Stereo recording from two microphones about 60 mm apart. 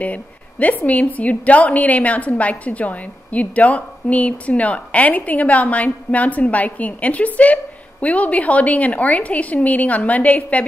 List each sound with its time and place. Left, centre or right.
0.0 s a woman's voice: left